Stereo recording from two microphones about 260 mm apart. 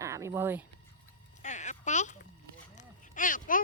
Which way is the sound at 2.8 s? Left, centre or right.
Left.